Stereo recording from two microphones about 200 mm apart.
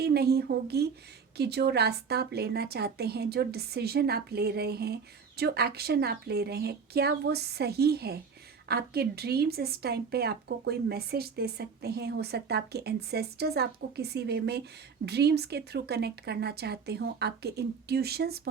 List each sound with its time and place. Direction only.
0.0 s a woman's voice: 55° right (ahead or behind)